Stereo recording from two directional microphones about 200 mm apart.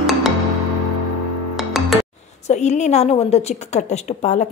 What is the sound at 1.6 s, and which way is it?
Music, centre (ahead or behind).